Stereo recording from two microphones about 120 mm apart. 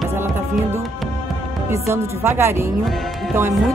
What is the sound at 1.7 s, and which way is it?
Speech, 20° right (ahead or behind).